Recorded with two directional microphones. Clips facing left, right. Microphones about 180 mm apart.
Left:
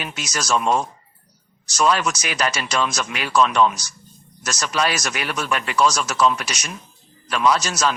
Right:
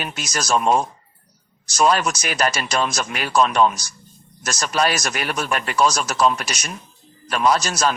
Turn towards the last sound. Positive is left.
turn(degrees=-50)  # may be behind; listen again after turning